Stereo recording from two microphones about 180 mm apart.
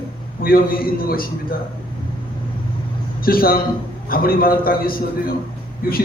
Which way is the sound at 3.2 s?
55° left (ahead or behind).